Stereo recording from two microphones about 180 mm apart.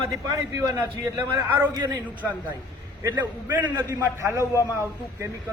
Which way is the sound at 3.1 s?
10° right (ahead or behind).